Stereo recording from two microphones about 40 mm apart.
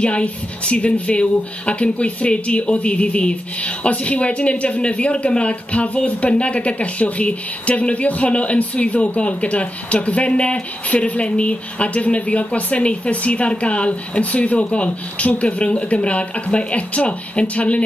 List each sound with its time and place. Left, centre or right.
0.0 s speech: left